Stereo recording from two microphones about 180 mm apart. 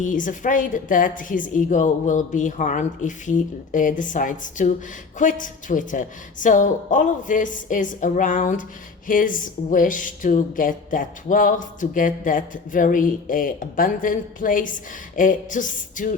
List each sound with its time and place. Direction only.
0.0 s speech: 45° left (ahead or behind)